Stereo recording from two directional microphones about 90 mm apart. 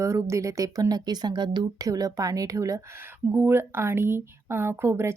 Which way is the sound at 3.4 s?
25° right (ahead or behind).